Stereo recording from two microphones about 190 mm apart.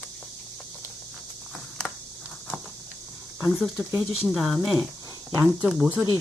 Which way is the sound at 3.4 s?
Centre (ahead or behind).